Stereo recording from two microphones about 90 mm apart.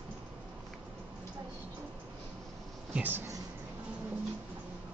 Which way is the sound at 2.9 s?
20° right (ahead or behind).